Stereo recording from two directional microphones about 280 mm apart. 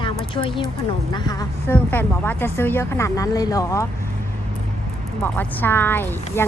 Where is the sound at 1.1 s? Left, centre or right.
Centre.